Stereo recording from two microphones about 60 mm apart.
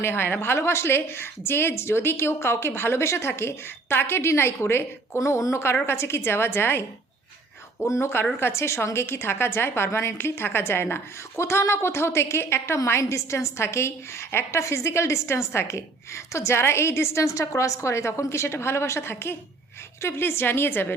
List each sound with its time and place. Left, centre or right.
0.0 s a woman's voice: left
7.9 s a woman's voice: left
17.7 s a woman's voice: left